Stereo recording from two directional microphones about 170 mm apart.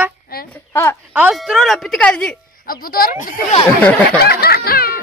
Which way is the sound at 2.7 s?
60° left (ahead or behind).